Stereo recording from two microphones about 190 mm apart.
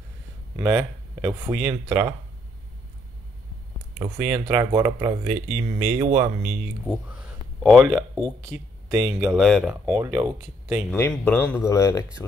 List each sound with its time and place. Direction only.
0.6 s speech: 15° right (ahead or behind)
4.0 s speech: 20° right (ahead or behind)
6.9 s a sound: 5° right (ahead or behind)
7.6 s speech: centre (ahead or behind)
8.8 s a sound: 20° right (ahead or behind)
9.2 s speech: centre (ahead or behind)
9.9 s speech: 15° right (ahead or behind)
10.9 s speech: 5° left (ahead or behind)